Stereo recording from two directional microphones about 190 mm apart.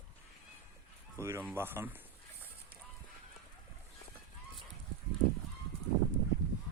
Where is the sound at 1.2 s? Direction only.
10° right (ahead or behind).